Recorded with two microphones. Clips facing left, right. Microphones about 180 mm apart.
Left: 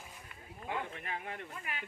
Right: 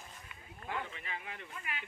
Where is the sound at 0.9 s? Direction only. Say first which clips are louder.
Left 4 dB; 55° left (ahead or behind).